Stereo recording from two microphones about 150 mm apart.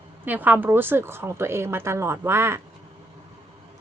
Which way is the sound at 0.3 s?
10° right (ahead or behind).